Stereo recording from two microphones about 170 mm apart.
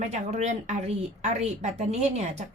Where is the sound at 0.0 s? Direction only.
40° right (ahead or behind).